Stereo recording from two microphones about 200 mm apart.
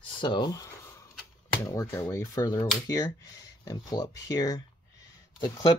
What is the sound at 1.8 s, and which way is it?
Speech, 15° left (ahead or behind).